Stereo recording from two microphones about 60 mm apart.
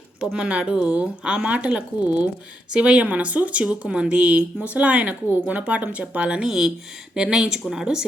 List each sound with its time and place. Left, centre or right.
0.2 s a woman's voice: centre
6.4 s a woman's voice: centre